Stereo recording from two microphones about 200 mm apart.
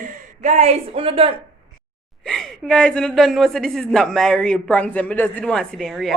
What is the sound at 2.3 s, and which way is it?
Speech, 5° left (ahead or behind).